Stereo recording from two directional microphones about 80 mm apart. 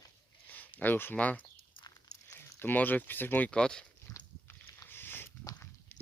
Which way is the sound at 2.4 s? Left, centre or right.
Left.